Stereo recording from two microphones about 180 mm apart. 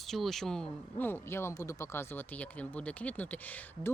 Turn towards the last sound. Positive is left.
turn(degrees=10)  # may be behind; listen again after turning